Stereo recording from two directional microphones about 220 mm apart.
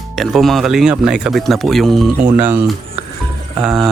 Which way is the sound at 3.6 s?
5° right (ahead or behind).